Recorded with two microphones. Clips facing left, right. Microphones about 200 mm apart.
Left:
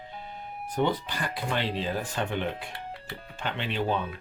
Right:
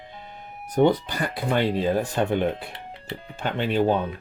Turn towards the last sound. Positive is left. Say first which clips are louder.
# right 7 dB
turn(degrees=-45)  # may be behind; listen again after turning